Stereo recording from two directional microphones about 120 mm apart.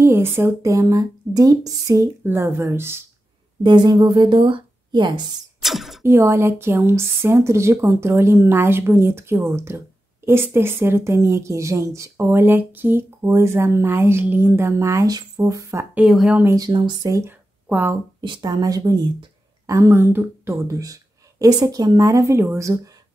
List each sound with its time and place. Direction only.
0.0 s a woman's voice: 20° right (ahead or behind)
3.6 s speech: 35° right (ahead or behind)
5.6 s throat clearing: centre (ahead or behind)
6.0 s a woman's voice: 20° right (ahead or behind)
15.9 s speech: 5° right (ahead or behind)
16.5 s speech: 35° right (ahead or behind)
17.1 s speech: 20° right (ahead or behind)
18.2 s a woman's voice: 35° right (ahead or behind)